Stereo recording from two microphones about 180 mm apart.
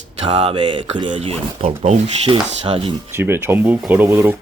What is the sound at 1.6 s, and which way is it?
Speech, 45° right (ahead or behind).